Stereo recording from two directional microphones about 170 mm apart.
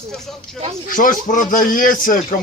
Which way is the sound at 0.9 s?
55° left (ahead or behind).